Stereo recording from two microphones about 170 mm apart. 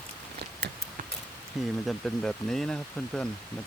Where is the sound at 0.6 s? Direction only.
80° right.